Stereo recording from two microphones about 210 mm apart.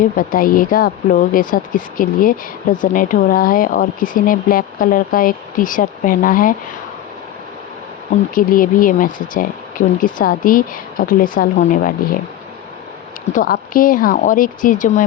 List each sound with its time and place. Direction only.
0.0 s speech: 40° left (ahead or behind)
8.4 s speech: 40° left (ahead or behind)
13.3 s speech: 40° left (ahead or behind)